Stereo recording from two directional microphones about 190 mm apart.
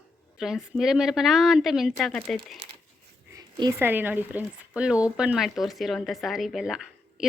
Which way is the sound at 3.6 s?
15° right (ahead or behind).